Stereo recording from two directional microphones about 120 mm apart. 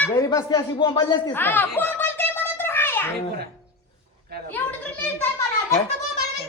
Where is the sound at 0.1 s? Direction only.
30° left (ahead or behind).